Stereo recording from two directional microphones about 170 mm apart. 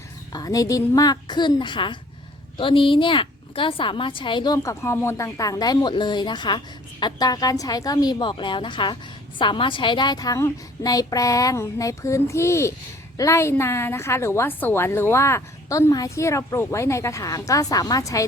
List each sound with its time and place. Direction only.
0.3 s a woman's voice: 20° left (ahead or behind)